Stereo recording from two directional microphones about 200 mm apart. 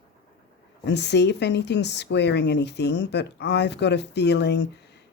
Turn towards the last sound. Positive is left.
turn(degrees=60)  # may be behind; listen again after turning